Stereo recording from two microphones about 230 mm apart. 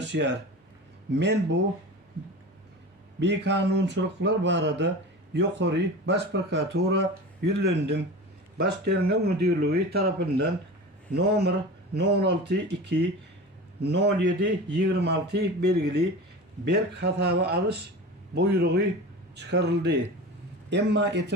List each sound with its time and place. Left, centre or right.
0.0 s speech: right
3.2 s speech: right